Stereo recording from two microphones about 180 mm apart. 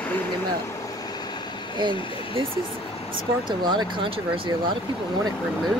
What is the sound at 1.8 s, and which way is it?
Speech, 25° right (ahead or behind).